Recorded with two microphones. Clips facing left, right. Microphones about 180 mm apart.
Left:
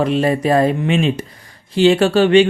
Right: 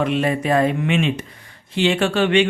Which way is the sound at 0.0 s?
35° left (ahead or behind).